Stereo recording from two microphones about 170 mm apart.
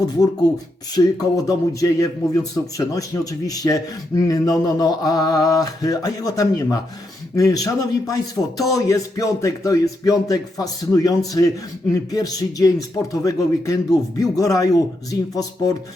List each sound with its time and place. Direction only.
0.9 s a man's voice: 20° left (ahead or behind)